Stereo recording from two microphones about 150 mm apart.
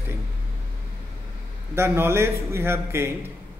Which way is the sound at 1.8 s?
15° right (ahead or behind).